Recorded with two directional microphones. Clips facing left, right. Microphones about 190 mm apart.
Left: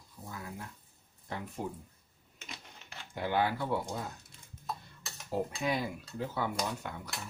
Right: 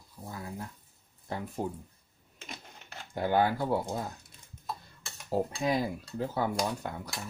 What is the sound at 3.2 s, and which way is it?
Speech, 45° right (ahead or behind).